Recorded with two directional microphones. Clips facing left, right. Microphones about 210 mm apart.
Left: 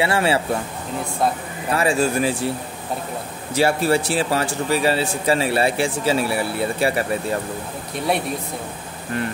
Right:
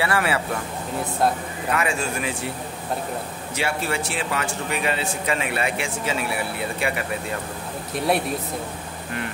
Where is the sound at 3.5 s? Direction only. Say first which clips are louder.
Left 8 dB; 35° left (ahead or behind).